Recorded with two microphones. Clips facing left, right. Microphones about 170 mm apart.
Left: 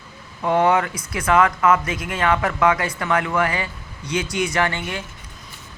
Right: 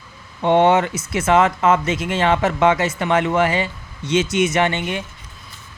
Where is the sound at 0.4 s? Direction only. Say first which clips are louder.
Right 3 dB; 25° right (ahead or behind).